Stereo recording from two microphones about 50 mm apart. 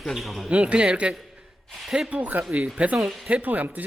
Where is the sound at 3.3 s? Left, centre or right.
Right.